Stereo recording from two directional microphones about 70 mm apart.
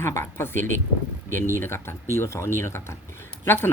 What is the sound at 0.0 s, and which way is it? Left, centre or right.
Speech, left.